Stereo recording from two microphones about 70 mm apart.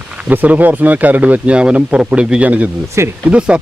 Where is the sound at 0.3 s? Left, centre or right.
Right.